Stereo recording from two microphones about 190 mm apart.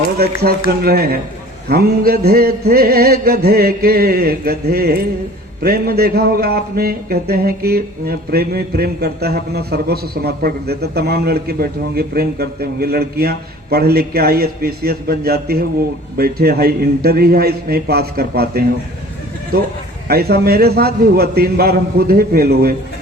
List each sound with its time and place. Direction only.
0.2 s a man's voice: 55° right (ahead or behind)
20.1 s a man's voice: 55° right (ahead or behind)